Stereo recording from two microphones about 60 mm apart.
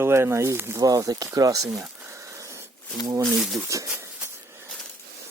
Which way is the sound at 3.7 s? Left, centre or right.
Right.